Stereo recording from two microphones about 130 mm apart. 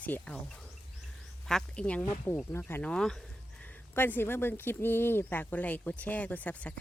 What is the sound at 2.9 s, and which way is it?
Speech, 5° left (ahead or behind).